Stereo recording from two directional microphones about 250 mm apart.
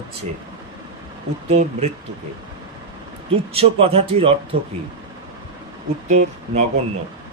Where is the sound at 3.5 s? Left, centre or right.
Right.